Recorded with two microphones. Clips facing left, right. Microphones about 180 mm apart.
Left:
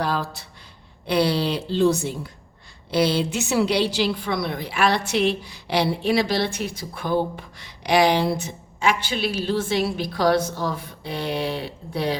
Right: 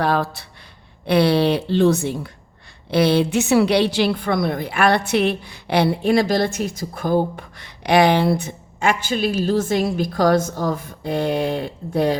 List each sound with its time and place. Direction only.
0.0 s a woman's voice: 60° right (ahead or behind)